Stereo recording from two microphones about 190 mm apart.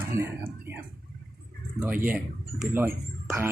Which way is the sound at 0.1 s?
15° right (ahead or behind).